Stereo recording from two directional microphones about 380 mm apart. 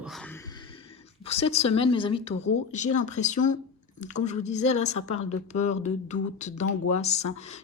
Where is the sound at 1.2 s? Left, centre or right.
Centre.